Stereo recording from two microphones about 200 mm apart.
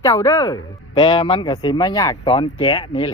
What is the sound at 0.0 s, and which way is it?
Speech, 15° left (ahead or behind).